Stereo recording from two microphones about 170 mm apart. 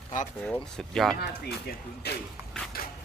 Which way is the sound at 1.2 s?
65° left (ahead or behind).